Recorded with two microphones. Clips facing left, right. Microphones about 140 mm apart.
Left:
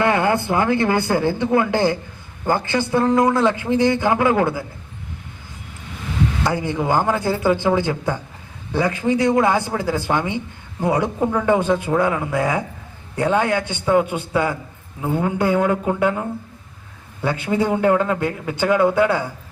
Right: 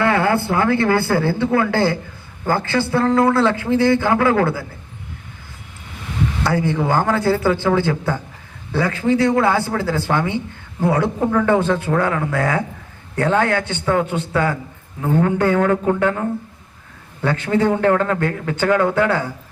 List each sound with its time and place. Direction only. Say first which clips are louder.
0.0 s speech: right 1 dB; 20° left (ahead or behind)
6.4 s speech: right 6 dB; 15° left (ahead or behind)
17.2 s speech: right 2 dB; 10° left (ahead or behind)